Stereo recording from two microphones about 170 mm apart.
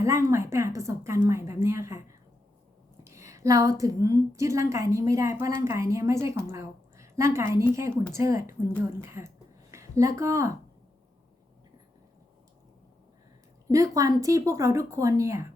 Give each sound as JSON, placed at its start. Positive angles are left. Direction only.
{"t": 0.0, "sound": "a woman's voice", "side_deg": -15}
{"t": 13.7, "sound": "speech", "side_deg": -20}